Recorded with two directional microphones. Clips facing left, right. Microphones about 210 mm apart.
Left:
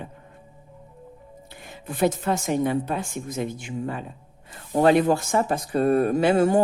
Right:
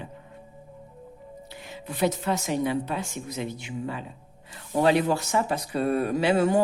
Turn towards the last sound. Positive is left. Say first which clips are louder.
# left 3 dB
turn(degrees=50)  # may be behind; listen again after turning